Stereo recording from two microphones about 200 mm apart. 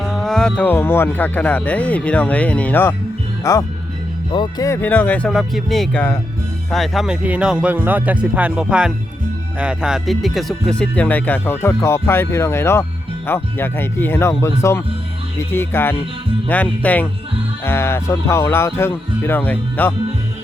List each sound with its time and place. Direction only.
0.0 s speech: centre (ahead or behind)